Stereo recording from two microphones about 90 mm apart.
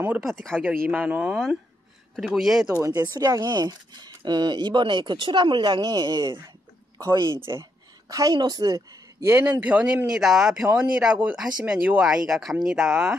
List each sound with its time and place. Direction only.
0.2 s speech: centre (ahead or behind)
0.8 s speech: 20° right (ahead or behind)
1.3 s speech: 5° right (ahead or behind)
3.0 s speech: 40° right (ahead or behind)
7.2 s speech: 30° right (ahead or behind)
8.1 s speech: 45° right (ahead or behind)
9.2 s speech: 30° right (ahead or behind)
9.6 s speech: 15° right (ahead or behind)